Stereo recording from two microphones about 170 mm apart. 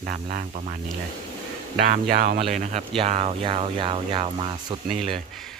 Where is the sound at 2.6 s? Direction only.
40° right (ahead or behind).